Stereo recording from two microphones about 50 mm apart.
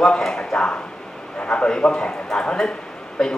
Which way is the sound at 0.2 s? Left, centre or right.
Centre.